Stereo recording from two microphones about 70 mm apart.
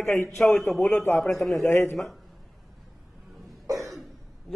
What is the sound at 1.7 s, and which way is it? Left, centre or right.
Speech, left.